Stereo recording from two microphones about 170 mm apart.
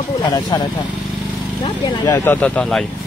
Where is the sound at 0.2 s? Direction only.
25° left (ahead or behind).